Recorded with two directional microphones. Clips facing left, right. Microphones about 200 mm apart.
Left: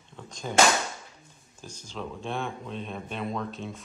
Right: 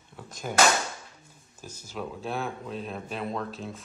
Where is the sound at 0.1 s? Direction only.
5° right (ahead or behind).